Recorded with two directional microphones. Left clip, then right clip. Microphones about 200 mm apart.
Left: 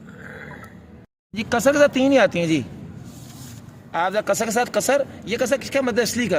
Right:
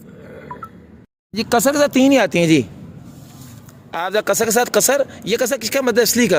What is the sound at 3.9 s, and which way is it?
Speech, 50° right (ahead or behind).